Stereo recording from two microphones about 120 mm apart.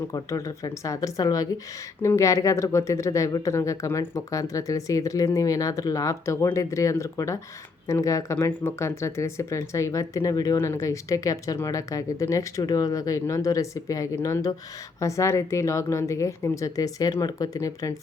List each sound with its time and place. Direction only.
0.1 s speech: 25° left (ahead or behind)